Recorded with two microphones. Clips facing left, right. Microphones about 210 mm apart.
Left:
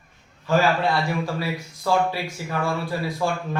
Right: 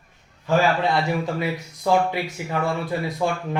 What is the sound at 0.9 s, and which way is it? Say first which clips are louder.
Speech: right 2 dB; 20° right (ahead or behind).